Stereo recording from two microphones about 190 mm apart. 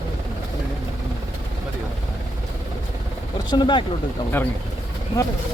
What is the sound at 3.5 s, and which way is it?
Speech, 25° left (ahead or behind).